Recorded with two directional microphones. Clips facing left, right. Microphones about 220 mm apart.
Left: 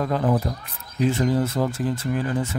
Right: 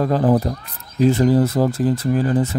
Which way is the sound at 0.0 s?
35° right (ahead or behind).